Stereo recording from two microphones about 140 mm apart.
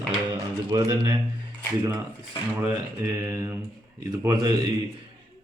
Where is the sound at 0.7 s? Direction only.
25° right (ahead or behind).